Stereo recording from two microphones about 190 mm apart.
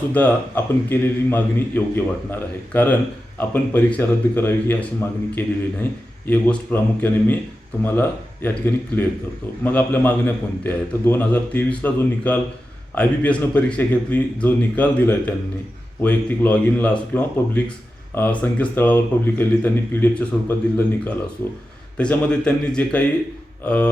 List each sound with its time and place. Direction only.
0.1 s speech: 10° left (ahead or behind)